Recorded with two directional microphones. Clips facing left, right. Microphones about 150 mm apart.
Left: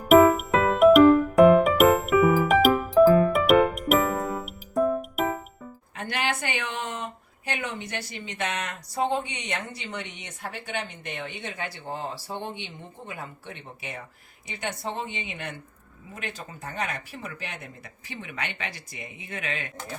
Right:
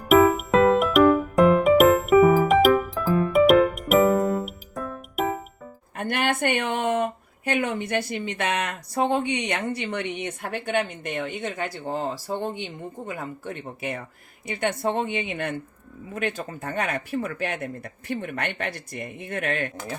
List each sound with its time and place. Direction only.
0.1 s music: centre (ahead or behind)
6.0 s speech: 55° right (ahead or behind)